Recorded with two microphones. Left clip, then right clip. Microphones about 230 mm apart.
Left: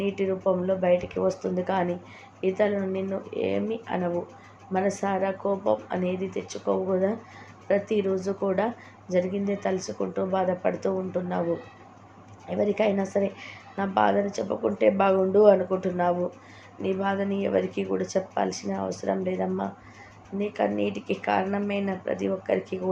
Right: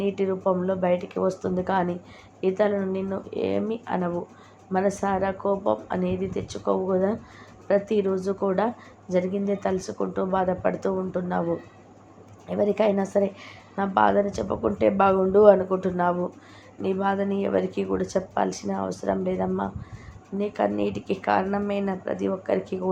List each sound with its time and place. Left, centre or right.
0.0 s speech: centre
12.5 s speech: centre